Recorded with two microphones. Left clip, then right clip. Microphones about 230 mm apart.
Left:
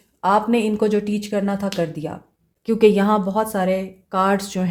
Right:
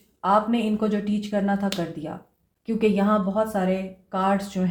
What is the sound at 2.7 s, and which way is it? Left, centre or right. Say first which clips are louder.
Speech: left 7 dB; left.